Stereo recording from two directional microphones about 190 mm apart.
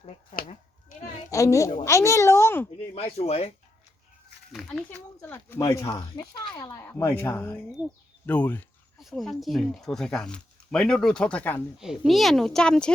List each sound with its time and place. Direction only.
0.3 s a sound: 45° left (ahead or behind)
1.3 s a woman's voice: 15° left (ahead or behind)
2.9 s speech: 35° left (ahead or behind)
4.5 s speech: 5° left (ahead or behind)